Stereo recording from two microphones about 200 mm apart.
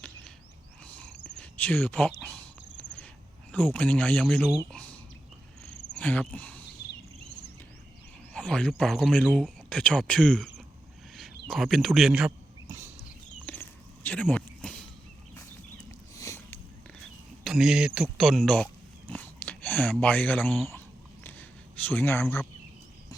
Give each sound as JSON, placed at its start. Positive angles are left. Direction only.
{"t": 0.9, "sound": "cricket", "side_deg": 5}
{"t": 3.5, "sound": "speech", "side_deg": 5}
{"t": 5.6, "sound": "cricket", "side_deg": 5}
{"t": 8.3, "sound": "a man's voice", "side_deg": 5}
{"t": 12.6, "sound": "cricket", "side_deg": -15}
{"t": 13.4, "sound": "a sound", "side_deg": 10}
{"t": 15.9, "sound": "a sound", "side_deg": 15}
{"t": 17.4, "sound": "speech", "side_deg": 0}
{"t": 21.2, "sound": "a sound", "side_deg": 10}